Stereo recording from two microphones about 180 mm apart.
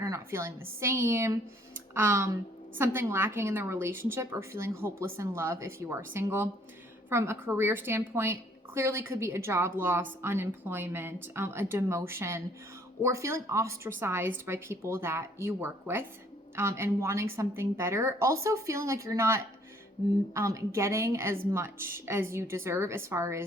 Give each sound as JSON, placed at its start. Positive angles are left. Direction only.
{"t": 0.0, "sound": "a woman's voice", "side_deg": -15}